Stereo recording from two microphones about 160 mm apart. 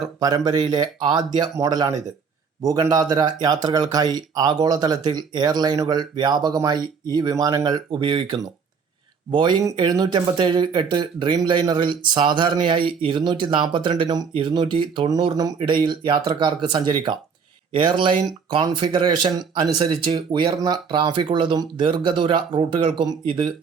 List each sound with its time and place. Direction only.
0.2 s speech: 25° right (ahead or behind)